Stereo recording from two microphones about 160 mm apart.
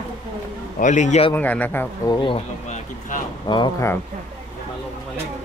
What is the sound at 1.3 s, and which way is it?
Speech, 10° left (ahead or behind).